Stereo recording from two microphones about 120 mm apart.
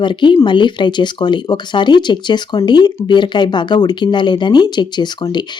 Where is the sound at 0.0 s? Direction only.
40° left (ahead or behind).